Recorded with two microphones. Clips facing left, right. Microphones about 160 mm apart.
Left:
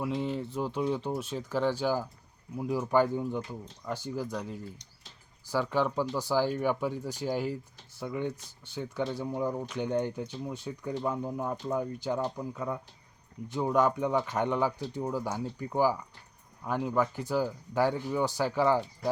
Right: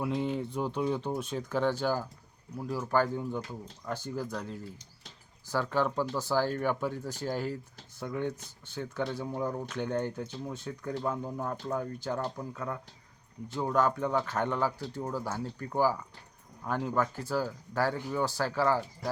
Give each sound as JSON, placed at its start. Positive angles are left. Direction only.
{"t": 0.0, "sound": "speech", "side_deg": 0}